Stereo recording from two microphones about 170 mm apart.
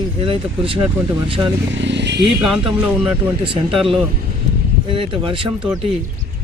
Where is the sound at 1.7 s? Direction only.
90° right.